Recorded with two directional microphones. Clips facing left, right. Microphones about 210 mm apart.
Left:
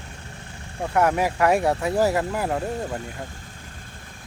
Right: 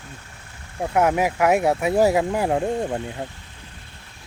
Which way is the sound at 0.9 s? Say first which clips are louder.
Right 1 dB; 15° right (ahead or behind).